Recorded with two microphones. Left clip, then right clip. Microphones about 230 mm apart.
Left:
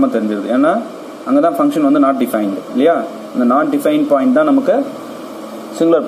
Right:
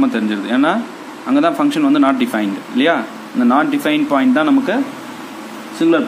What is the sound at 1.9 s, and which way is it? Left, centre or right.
A man's voice, centre.